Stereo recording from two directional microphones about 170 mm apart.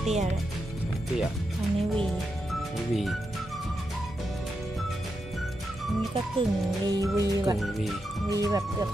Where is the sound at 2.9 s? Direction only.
Centre (ahead or behind).